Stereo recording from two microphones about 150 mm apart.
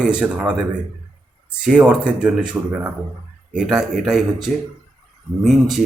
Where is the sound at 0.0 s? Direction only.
5° right (ahead or behind).